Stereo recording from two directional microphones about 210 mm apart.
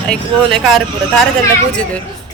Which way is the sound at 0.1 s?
Centre (ahead or behind).